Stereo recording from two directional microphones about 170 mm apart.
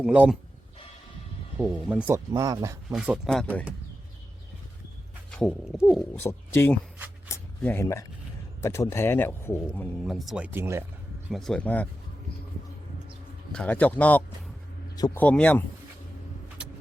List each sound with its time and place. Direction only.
0.0 s speech: 5° right (ahead or behind)
1.5 s speech: 5° right (ahead or behind)
2.1 s speech: 20° right (ahead or behind)
2.9 s speech: 5° right (ahead or behind)
5.4 s speech: centre (ahead or behind)
6.1 s speech: 15° left (ahead or behind)
7.3 s a sound: 15° left (ahead or behind)
8.6 s speech: 15° left (ahead or behind); by 10.8 s 15° right (ahead or behind)
11.3 s speech: centre (ahead or behind)
13.5 s speech: 5° left (ahead or behind)
14.9 s speech: 20° left (ahead or behind)
15.2 s speech: 10° left (ahead or behind)